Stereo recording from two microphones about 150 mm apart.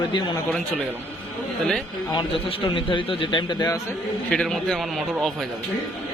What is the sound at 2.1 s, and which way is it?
A man's voice, 35° left (ahead or behind).